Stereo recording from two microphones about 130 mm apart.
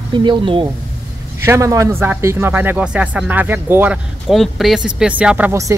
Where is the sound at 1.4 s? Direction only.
20° right (ahead or behind).